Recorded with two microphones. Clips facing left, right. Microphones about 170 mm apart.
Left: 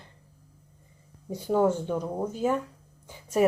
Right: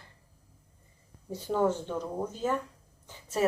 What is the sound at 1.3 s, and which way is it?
Speech, 10° left (ahead or behind).